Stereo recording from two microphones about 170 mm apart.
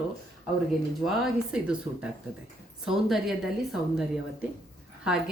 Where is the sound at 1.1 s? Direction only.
5° right (ahead or behind).